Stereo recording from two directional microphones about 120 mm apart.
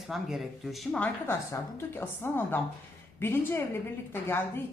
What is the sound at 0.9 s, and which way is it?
A woman's voice, 10° left (ahead or behind).